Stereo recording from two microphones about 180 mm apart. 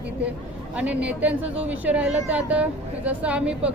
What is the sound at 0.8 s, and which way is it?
Speech, 5° right (ahead or behind).